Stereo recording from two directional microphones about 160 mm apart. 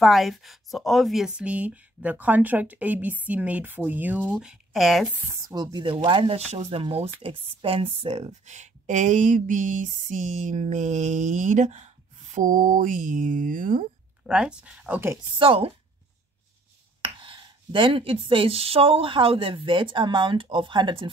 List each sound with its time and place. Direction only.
0.0 s speech: centre (ahead or behind)
5.5 s speech: 25° right (ahead or behind); by 13.8 s 55° right (ahead or behind)
14.2 s speech: 5° right (ahead or behind)
15.3 s speech: 35° right (ahead or behind)
17.0 s speech: 30° right (ahead or behind)